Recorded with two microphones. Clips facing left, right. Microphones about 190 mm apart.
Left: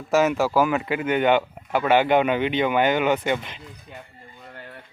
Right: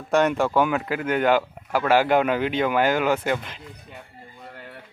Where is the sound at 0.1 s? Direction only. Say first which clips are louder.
Even; 5° left (ahead or behind).